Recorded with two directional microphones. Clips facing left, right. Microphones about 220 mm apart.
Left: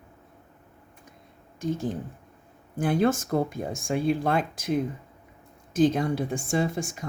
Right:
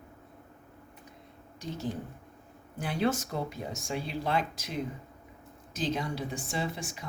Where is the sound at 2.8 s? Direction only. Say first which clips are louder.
Left 6 dB; 50° left (ahead or behind).